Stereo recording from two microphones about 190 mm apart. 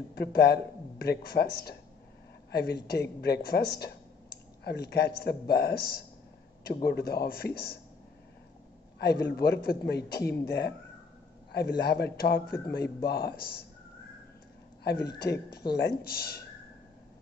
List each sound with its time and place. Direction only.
0.1 s a man's voice: 60° left (ahead or behind)
8.9 s a man's voice: 60° left (ahead or behind)
14.8 s a man's voice: 60° left (ahead or behind)